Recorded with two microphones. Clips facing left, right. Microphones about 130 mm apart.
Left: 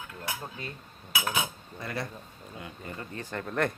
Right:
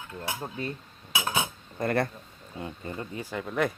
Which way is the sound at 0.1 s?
30° right (ahead or behind).